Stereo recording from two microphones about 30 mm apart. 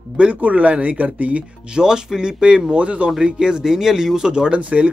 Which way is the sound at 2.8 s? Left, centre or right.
Right.